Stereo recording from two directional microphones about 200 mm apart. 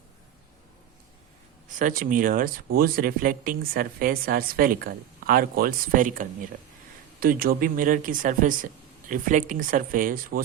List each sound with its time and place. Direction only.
1.7 s speech: 40° right (ahead or behind)